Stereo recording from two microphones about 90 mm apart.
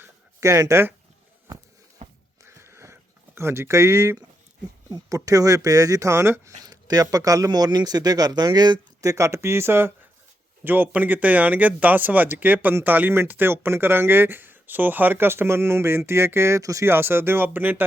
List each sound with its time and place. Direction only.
0.0 s a sound: 30° right (ahead or behind)
0.6 s speech: 30° right (ahead or behind)
2.4 s a sound: 30° right (ahead or behind)
4.9 s speech: 45° right (ahead or behind)
6.6 s speech: 45° right (ahead or behind)
9.0 s speech: 35° right (ahead or behind)